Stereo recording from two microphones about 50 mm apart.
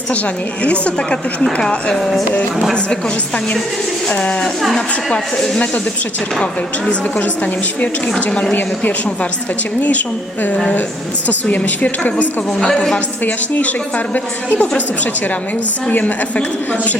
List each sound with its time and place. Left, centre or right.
0.6 s a woman's voice: left
7.2 s a woman's voice: left
8.2 s a woman's voice: left
11.3 s a woman's voice: left
12.5 s speech: centre
13.2 s a woman's voice: left
15.9 s a woman's voice: left